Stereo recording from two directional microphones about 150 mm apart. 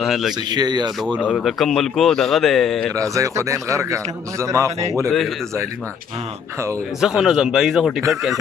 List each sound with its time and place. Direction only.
0.0 s speech: centre (ahead or behind)
0.5 s a man's voice: 30° right (ahead or behind)
1.2 s speech: centre (ahead or behind)
2.9 s a man's voice: 20° right (ahead or behind)
7.0 s speech: 5° right (ahead or behind)